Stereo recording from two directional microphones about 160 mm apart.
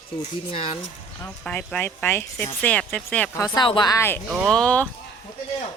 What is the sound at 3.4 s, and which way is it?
Speech, 30° left (ahead or behind).